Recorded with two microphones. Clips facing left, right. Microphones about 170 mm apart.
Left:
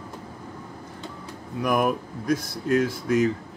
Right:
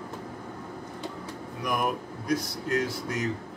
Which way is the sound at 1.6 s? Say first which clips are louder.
Left 6 dB; 55° left (ahead or behind).